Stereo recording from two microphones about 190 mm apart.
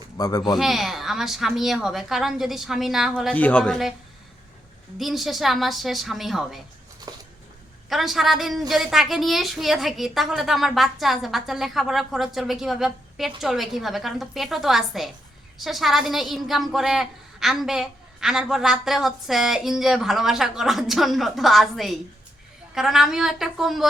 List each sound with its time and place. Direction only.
0.2 s speech: 20° left (ahead or behind)
0.6 s a child's voice: centre (ahead or behind)
3.3 s a child's voice: 10° left (ahead or behind)
4.9 s a child's voice: centre (ahead or behind)
7.9 s a child's voice: centre (ahead or behind)